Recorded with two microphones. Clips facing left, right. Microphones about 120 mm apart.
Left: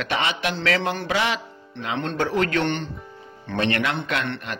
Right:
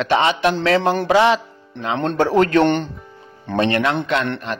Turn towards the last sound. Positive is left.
turn(degrees=-35)  # may be behind; listen again after turning